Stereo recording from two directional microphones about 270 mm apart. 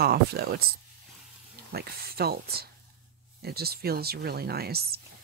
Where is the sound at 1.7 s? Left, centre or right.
Right.